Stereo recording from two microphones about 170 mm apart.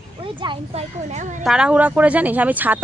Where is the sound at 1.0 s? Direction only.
45° right (ahead or behind).